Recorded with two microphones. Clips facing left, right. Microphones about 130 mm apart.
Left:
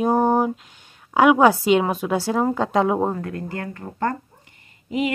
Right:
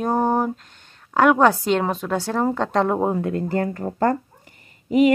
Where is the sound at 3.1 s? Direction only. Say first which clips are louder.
Right 6 dB; 25° right (ahead or behind).